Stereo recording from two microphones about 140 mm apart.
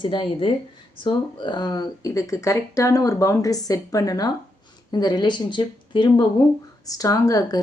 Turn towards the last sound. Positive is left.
turn(degrees=25)  # may be behind; listen again after turning